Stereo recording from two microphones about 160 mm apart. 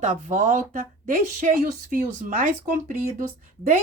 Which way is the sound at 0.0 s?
50° right (ahead or behind).